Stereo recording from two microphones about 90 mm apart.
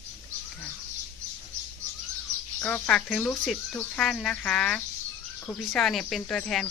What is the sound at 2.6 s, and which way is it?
Speech, 15° left (ahead or behind).